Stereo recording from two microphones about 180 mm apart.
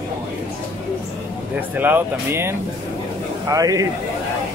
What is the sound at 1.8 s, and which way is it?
Speech, 10° right (ahead or behind).